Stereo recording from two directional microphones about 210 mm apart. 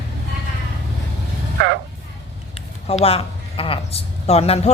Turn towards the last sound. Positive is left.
turn(degrees=30)  # may be behind; listen again after turning